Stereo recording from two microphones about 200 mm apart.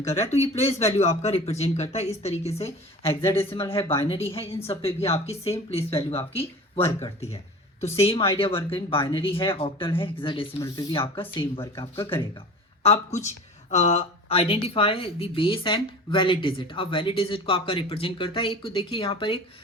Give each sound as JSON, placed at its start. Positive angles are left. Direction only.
{"t": 0.0, "sound": "speech", "side_deg": 30}
{"t": 7.8, "sound": "speech", "side_deg": 30}